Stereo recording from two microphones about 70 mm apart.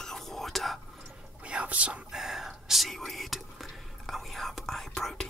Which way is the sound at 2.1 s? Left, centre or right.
Centre.